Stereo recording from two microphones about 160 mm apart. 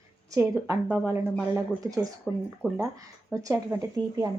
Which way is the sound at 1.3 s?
Centre (ahead or behind).